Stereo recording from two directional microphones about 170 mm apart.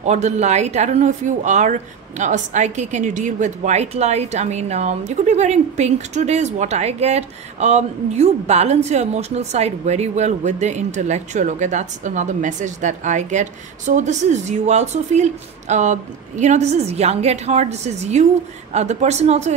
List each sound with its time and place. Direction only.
0.0 s a woman's voice: 40° right (ahead or behind)